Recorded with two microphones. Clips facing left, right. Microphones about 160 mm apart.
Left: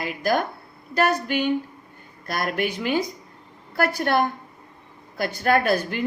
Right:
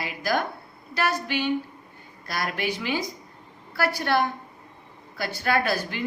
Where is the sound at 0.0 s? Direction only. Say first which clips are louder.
Left 3 dB; 45° left (ahead or behind).